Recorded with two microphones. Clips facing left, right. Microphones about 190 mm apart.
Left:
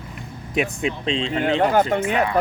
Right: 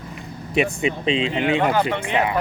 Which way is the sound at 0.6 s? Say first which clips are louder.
Right 2 dB; 5° right (ahead or behind).